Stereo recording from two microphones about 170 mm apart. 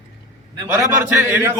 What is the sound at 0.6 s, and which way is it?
Speech, 15° right (ahead or behind).